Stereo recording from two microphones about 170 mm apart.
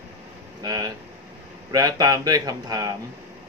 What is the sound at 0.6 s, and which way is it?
Speech, 20° right (ahead or behind).